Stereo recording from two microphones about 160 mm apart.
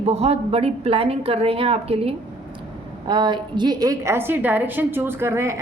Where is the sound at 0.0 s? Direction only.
40° right (ahead or behind).